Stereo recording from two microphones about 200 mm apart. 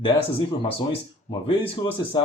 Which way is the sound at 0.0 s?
25° left (ahead or behind).